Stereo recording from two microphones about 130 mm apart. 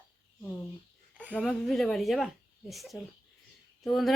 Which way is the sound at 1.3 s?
5° left (ahead or behind).